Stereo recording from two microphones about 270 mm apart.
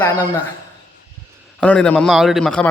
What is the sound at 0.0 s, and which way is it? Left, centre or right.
Speech, centre.